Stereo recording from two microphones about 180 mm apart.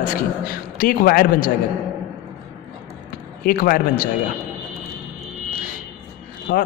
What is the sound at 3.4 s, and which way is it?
Speech, 50° left (ahead or behind).